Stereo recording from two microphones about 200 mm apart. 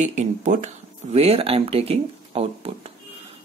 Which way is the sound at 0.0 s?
35° right (ahead or behind).